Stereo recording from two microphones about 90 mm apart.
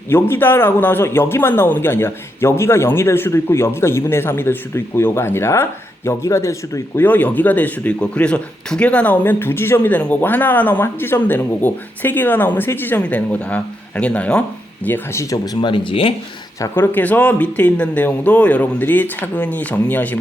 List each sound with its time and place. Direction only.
0.1 s speech: 25° left (ahead or behind)
7.0 s speech: 20° left (ahead or behind)
15.6 s speech: 70° left (ahead or behind)
16.7 s speech: 20° left (ahead or behind)